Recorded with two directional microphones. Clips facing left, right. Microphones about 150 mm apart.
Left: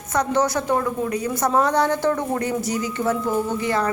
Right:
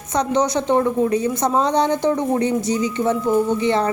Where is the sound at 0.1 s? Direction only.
20° right (ahead or behind).